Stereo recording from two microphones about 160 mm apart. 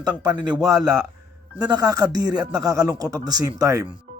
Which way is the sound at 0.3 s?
30° right (ahead or behind).